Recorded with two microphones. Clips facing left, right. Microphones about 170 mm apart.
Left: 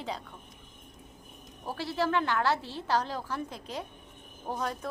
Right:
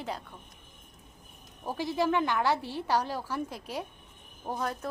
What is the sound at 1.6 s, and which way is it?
A woman's voice, 15° right (ahead or behind).